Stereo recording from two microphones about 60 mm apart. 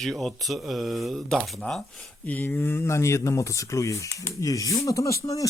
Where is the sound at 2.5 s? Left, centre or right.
Left.